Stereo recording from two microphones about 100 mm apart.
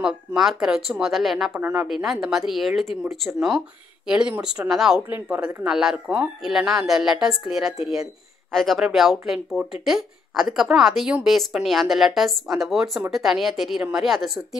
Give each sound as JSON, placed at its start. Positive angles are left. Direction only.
{"t": 0.0, "sound": "a woman's voice", "side_deg": -5}
{"t": 1.5, "sound": "a woman's voice", "side_deg": -15}